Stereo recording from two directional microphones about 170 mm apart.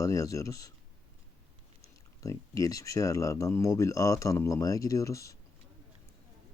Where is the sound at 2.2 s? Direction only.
20° left (ahead or behind).